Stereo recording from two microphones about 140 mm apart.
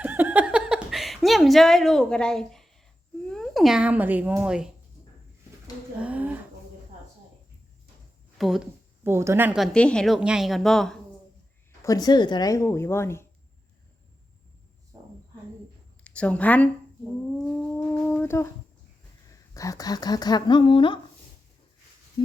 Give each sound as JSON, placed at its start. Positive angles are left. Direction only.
{"t": 0.0, "sound": "a sound", "side_deg": -10}
{"t": 3.2, "sound": "speech", "side_deg": 5}
{"t": 6.0, "sound": "a sound", "side_deg": -10}
{"t": 8.4, "sound": "a woman's voice", "side_deg": 0}
{"t": 9.0, "sound": "a woman's voice", "side_deg": -20}
{"t": 9.7, "sound": "a woman's voice", "side_deg": 5}
{"t": 11.8, "sound": "a woman's voice", "side_deg": 25}
{"t": 16.0, "sound": "a woman's voice", "side_deg": 10}
{"t": 17.3, "sound": "humming", "side_deg": 10}
{"t": 19.5, "sound": "a woman's voice", "side_deg": 25}